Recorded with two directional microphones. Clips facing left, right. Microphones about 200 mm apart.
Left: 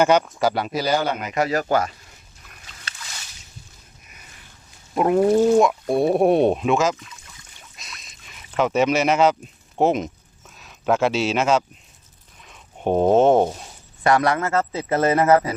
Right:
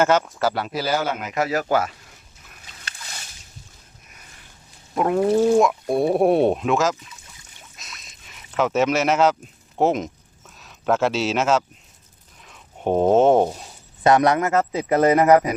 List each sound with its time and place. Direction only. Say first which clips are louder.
0.0 s speech: left 1 dB; 15° left (ahead or behind)
0.7 s speech: left 2 dB; 5° right (ahead or behind)
4.9 s speech: left 2 dB; 5° left (ahead or behind)
7.8 s a sound: left 1 dB; centre (ahead or behind)
8.5 s speech: left 1 dB; centre (ahead or behind)
9.7 s a sound: left 1 dB; centre (ahead or behind)
13.4 s speech: even; centre (ahead or behind)
14.0 s a man's voice: right 2 dB; 20° right (ahead or behind)